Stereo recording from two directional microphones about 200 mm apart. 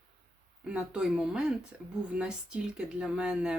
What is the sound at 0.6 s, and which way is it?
Speech, 5° right (ahead or behind).